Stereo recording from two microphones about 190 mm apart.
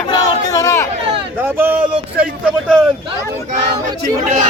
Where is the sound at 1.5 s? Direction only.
10° right (ahead or behind).